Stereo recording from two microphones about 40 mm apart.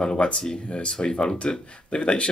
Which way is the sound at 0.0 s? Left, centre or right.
Left.